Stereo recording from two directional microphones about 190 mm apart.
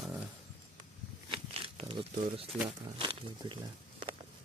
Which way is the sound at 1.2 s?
30° right (ahead or behind).